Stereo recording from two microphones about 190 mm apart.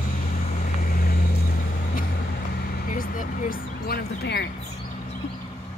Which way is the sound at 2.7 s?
45° left (ahead or behind).